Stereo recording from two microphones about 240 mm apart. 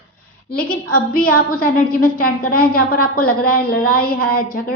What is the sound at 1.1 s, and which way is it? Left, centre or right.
A woman's voice, left.